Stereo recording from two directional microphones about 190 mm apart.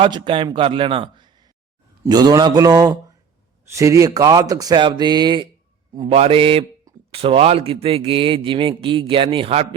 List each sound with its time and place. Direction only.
0.0 s a man's voice: 25° right (ahead or behind)
6.1 s a man's voice: 30° right (ahead or behind)